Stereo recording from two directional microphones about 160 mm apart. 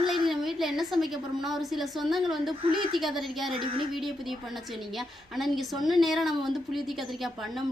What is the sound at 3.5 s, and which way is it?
Child singing, 30° right (ahead or behind).